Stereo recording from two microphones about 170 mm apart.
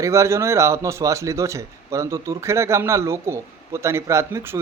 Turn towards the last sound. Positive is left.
turn(degrees=-15)  # may be behind; listen again after turning